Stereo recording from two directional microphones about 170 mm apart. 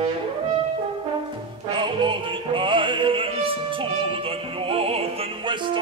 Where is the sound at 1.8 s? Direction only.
30° right (ahead or behind).